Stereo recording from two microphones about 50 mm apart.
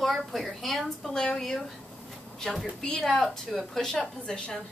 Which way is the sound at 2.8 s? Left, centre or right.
Centre.